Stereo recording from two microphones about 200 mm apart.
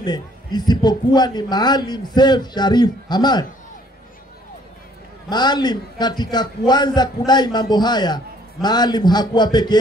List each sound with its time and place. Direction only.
0.0 s a man's voice: 20° left (ahead or behind)
5.3 s a man's voice: 20° left (ahead or behind)